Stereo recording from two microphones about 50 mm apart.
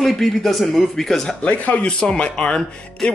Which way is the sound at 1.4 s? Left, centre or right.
Left.